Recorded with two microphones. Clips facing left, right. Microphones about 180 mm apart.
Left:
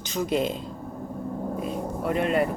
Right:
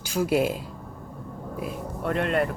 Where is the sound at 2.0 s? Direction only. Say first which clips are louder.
Left 1 dB; centre (ahead or behind).